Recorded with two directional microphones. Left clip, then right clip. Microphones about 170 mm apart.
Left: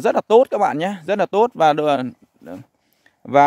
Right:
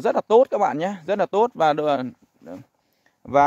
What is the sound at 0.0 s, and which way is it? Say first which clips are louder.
Speech: left 3 dB; 30° left (ahead or behind).